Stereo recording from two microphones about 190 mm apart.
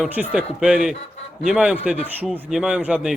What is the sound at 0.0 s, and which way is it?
A man's voice, 5° right (ahead or behind).